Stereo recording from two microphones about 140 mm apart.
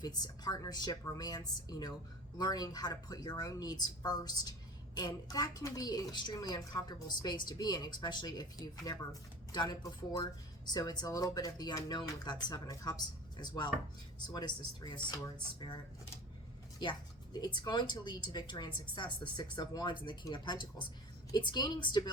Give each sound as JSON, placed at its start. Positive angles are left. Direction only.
{"t": 0.0, "sound": "a woman's voice", "side_deg": 30}
{"t": 2.4, "sound": "a woman's voice", "side_deg": 30}
{"t": 17.3, "sound": "a woman's voice", "side_deg": 30}